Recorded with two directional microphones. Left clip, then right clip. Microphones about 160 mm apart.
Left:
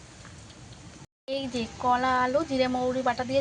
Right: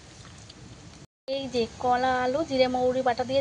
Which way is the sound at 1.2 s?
20° right (ahead or behind).